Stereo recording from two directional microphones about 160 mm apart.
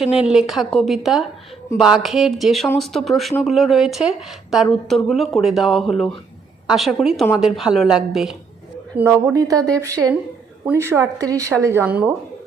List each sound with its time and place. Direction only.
0.2 s a woman's voice: 5° right (ahead or behind)
9.2 s speech: 20° right (ahead or behind)